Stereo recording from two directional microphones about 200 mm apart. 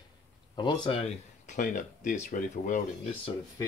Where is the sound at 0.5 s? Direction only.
25° left (ahead or behind).